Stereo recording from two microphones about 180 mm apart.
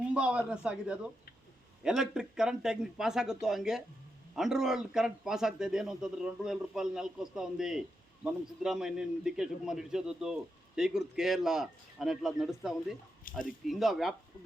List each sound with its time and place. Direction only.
0.1 s speech: 5° right (ahead or behind)
13.2 s speech: 50° left (ahead or behind)
13.7 s speech: centre (ahead or behind)